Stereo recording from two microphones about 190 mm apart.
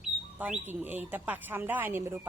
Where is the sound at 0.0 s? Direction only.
5° right (ahead or behind).